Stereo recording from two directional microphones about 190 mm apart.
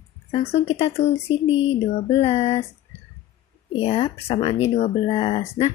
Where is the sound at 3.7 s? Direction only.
30° left (ahead or behind).